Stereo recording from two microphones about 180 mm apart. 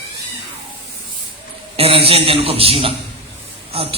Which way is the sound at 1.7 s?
30° right (ahead or behind).